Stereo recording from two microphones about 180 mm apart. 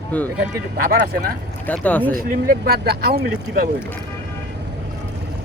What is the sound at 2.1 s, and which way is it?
Speech, 55° right (ahead or behind).